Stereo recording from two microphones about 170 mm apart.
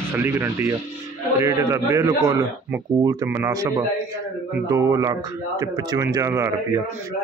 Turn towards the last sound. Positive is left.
turn(degrees=-20)  # may be behind; listen again after turning